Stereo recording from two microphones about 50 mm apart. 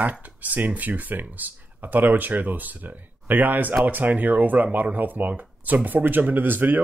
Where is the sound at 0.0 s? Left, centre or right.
Right.